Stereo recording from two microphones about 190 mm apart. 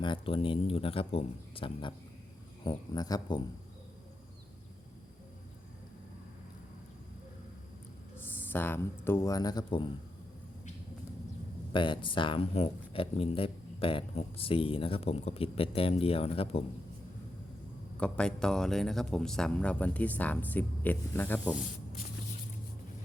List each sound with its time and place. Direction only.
0.0 s speech: 25° left (ahead or behind)
8.2 s speech: 10° left (ahead or behind)
11.7 s speech: 25° left (ahead or behind)
18.0 s speech: 5° left (ahead or behind)